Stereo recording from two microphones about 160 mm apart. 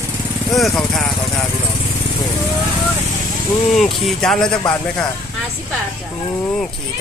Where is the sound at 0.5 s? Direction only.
Centre (ahead or behind).